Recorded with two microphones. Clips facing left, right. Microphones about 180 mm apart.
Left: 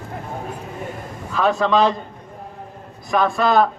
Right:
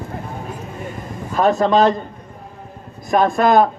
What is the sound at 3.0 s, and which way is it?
Speech, 45° right (ahead or behind).